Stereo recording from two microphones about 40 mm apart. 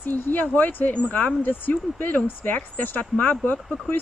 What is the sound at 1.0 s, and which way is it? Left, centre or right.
Speech, left.